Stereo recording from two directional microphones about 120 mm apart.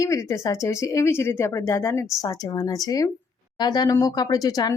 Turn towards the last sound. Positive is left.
turn(degrees=30)  # may be behind; listen again after turning